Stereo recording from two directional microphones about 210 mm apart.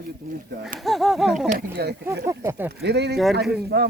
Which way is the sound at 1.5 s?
45° right (ahead or behind).